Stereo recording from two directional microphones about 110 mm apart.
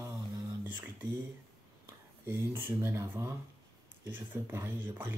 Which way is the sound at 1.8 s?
25° right (ahead or behind).